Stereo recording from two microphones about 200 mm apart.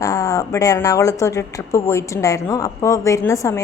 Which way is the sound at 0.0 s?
15° left (ahead or behind).